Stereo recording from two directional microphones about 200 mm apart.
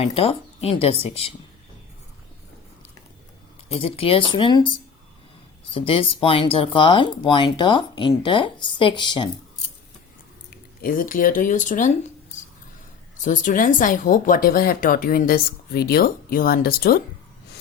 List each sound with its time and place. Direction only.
0.0 s a woman's voice: 30° left (ahead or behind)
3.7 s speech: 30° left (ahead or behind)
5.7 s speech: 25° left (ahead or behind)
10.5 s speech: 45° left (ahead or behind)
13.1 s a woman's voice: 40° left (ahead or behind)